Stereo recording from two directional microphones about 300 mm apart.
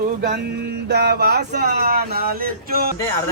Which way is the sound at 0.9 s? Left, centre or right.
Right.